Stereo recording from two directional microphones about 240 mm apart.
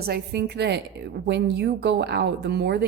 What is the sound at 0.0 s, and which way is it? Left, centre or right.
A woman's voice, right.